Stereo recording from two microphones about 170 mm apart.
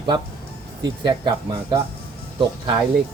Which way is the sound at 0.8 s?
25° right (ahead or behind).